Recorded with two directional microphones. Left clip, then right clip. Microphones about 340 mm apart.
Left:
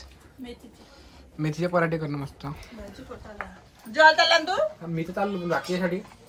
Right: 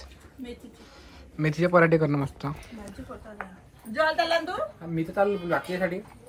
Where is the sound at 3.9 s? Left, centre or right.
Left.